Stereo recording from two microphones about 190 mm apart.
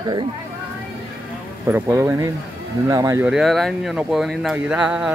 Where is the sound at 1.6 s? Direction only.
15° right (ahead or behind).